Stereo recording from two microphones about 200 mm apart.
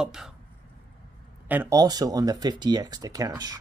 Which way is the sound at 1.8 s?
20° right (ahead or behind).